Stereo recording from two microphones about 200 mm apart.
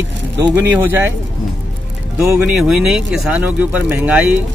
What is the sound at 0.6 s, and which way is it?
Speech, 10° right (ahead or behind).